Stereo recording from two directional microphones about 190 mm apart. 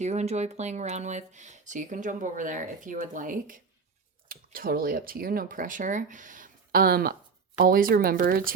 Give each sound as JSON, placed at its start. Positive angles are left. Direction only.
{"t": 0.0, "sound": "speech", "side_deg": -35}